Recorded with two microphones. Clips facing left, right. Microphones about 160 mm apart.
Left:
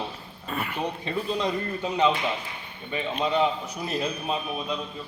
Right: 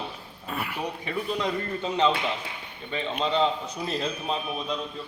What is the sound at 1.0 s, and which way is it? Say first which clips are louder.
A man's voice: even; 20° left (ahead or behind).